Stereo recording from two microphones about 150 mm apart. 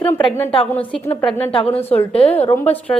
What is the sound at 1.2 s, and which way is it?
Speech, 35° left (ahead or behind).